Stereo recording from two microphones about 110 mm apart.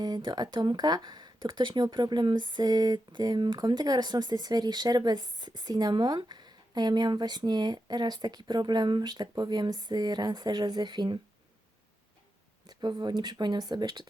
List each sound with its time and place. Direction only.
0.0 s speech: 40° right (ahead or behind)
12.6 s speech: 40° right (ahead or behind)